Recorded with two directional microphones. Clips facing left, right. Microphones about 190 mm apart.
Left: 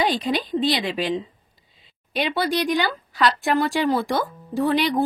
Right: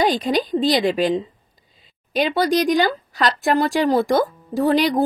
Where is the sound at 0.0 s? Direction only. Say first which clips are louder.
Right 4 dB; 40° right (ahead or behind).